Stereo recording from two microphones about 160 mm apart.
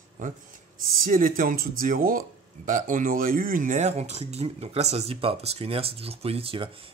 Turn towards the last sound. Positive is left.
turn(degrees=-35)  # may be behind; listen again after turning